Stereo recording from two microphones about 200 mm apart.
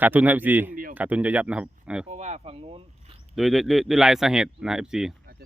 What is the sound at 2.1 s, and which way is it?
Speech, 35° right (ahead or behind).